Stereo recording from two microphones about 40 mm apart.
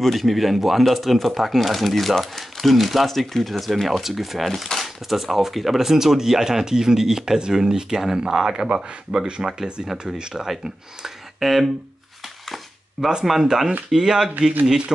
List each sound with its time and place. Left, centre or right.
0.0 s speech: centre
11.3 s speech: centre
13.2 s speech: centre